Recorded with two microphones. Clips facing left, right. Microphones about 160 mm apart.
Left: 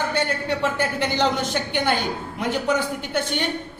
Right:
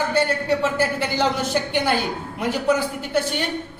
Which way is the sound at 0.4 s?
5° right (ahead or behind).